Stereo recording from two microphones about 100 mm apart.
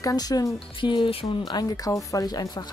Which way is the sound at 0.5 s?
55° left (ahead or behind).